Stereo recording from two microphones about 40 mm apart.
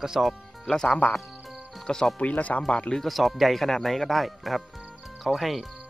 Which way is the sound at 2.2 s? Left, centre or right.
Left.